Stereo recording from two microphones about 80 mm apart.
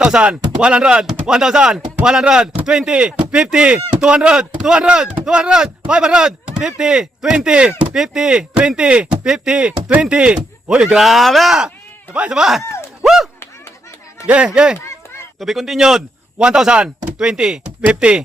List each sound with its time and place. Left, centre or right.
0.0 s speech: centre
13.0 s a sound: centre
14.3 s speech: centre